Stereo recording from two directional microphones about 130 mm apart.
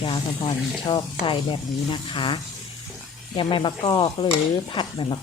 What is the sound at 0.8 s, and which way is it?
Speech, 40° left (ahead or behind).